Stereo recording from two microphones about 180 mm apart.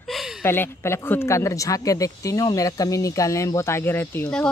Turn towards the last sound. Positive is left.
turn(degrees=10)  # may be behind; listen again after turning